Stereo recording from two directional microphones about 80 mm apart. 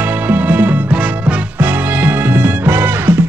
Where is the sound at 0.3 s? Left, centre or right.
Right.